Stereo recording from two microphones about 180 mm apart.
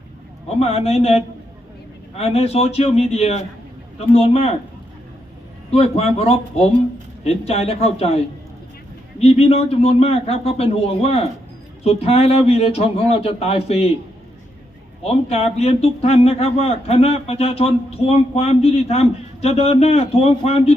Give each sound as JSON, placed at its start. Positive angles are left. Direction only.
{"t": 0.6, "sound": "a man's voice", "side_deg": 35}
{"t": 5.7, "sound": "a man's voice", "side_deg": 35}
{"t": 15.0, "sound": "a man's voice", "side_deg": 35}